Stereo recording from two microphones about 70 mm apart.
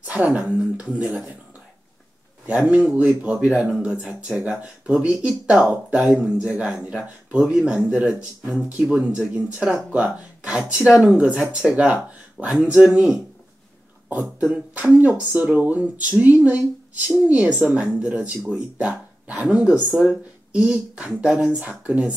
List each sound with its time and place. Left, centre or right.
0.0 s a sound: right
0.4 s speech: centre
2.5 s speech: centre
14.4 s speech: right
21.5 s speech: right